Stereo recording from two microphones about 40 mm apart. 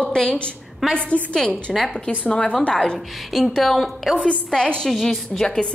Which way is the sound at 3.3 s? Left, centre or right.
Centre.